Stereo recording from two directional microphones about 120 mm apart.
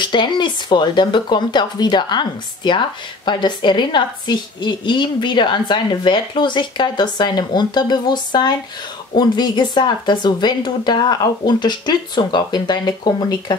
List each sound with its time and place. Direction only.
0.0 s a woman's voice: 40° left (ahead or behind)